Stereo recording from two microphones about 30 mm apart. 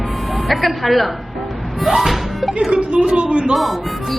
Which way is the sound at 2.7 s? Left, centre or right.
Right.